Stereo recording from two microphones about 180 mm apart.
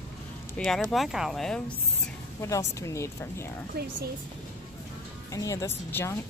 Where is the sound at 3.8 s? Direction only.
60° right (ahead or behind).